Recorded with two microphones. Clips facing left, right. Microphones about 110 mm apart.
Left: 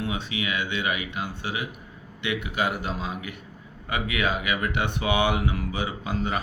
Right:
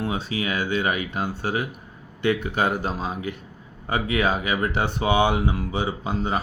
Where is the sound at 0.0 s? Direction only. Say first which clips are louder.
Right 3 dB; 35° right (ahead or behind).